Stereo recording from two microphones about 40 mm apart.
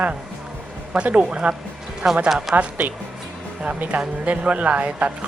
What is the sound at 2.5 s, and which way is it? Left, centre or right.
Speech, right.